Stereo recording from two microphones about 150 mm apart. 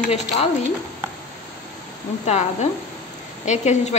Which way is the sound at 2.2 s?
45° left (ahead or behind).